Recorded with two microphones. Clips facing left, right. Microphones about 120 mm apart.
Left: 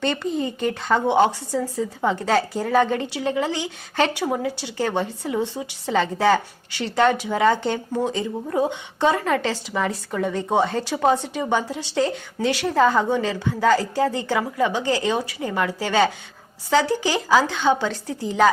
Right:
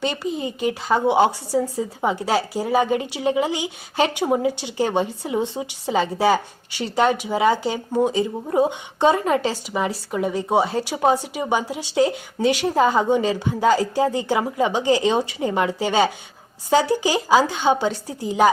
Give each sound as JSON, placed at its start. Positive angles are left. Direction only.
{"t": 0.0, "sound": "a woman's voice", "side_deg": -10}